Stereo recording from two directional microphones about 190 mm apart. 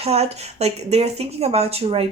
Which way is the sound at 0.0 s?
35° right (ahead or behind).